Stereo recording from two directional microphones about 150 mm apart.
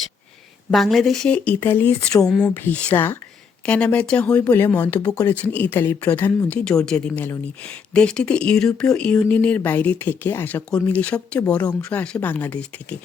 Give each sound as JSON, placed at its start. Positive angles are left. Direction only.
{"t": 0.7, "sound": "speech", "side_deg": 0}
{"t": 2.2, "sound": "speech", "side_deg": 5}